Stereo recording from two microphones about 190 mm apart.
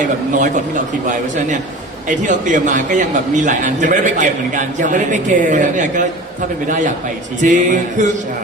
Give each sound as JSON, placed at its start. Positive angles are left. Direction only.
{"t": 2.2, "sound": "a man's voice", "side_deg": -40}
{"t": 7.4, "sound": "a man's voice", "side_deg": -40}